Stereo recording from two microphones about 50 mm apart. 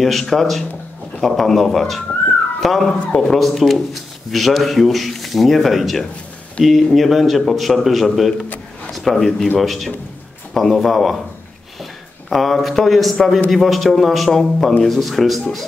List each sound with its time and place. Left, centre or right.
0.0 s speech: centre
12.3 s speech: centre